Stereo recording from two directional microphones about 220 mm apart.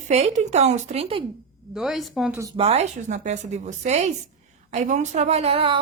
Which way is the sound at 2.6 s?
30° right (ahead or behind).